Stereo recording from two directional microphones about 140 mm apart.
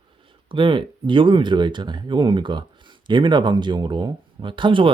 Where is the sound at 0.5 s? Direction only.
35° right (ahead or behind).